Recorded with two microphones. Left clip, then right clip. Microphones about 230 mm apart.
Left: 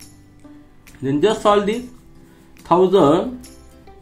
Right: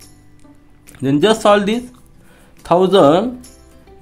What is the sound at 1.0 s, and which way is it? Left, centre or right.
Speech, right.